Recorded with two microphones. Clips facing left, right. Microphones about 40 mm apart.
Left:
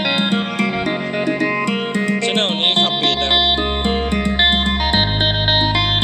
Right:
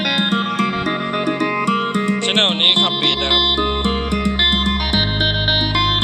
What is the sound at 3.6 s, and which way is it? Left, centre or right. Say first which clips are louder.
Music: even; centre.